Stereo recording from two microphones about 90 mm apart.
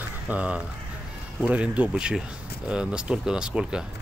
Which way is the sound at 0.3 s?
15° right (ahead or behind).